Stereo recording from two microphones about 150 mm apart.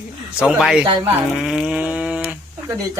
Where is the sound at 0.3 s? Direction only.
5° right (ahead or behind).